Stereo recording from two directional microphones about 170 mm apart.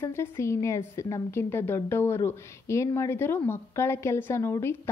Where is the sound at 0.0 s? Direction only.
15° left (ahead or behind).